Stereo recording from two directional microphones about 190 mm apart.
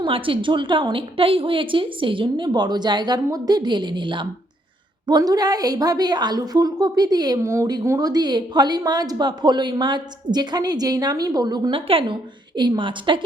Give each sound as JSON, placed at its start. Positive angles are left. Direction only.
{"t": 0.0, "sound": "a woman's voice", "side_deg": -25}